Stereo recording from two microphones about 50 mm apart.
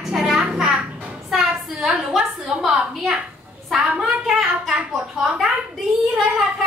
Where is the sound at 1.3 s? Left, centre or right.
Centre.